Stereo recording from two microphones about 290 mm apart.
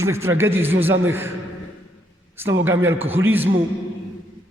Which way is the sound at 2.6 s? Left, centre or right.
Centre.